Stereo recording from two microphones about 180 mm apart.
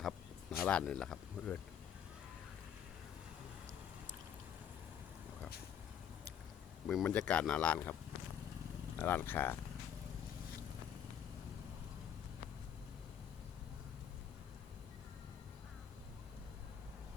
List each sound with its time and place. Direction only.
0.6 s speech: 5° left (ahead or behind)
6.8 s speech: 5° left (ahead or behind)
9.0 s speech: 10° left (ahead or behind)